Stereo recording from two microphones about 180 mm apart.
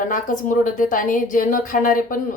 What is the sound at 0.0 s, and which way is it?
A woman's voice, 45° left (ahead or behind).